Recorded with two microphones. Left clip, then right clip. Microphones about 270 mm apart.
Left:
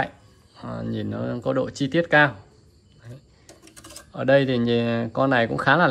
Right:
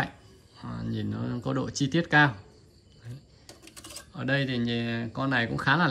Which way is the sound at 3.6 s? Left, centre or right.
Centre.